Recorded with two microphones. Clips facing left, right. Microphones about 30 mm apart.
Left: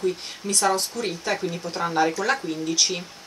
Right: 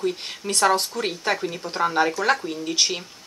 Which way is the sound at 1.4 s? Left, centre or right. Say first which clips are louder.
Even; centre.